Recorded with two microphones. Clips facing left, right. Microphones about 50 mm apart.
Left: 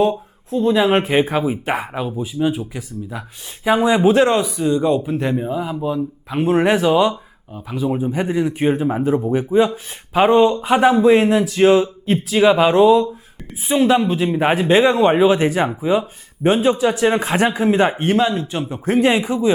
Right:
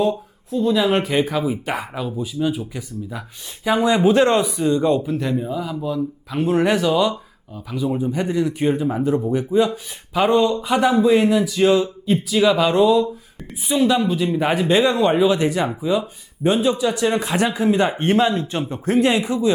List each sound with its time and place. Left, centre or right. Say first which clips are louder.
0.5 s speech: left 3 dB; left; by 5.1 s centre
5.1 s speech: left 2 dB; left
17.9 s speech: even; centre
18.9 s speech: left 2 dB; centre